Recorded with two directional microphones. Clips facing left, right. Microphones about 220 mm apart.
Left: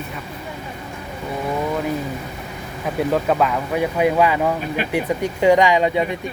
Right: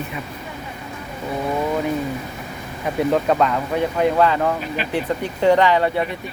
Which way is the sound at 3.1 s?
Centre (ahead or behind).